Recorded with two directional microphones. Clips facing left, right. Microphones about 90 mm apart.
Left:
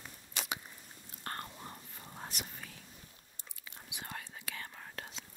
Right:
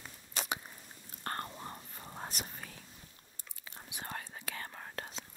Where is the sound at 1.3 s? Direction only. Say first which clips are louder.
Right 3 dB; 40° right (ahead or behind).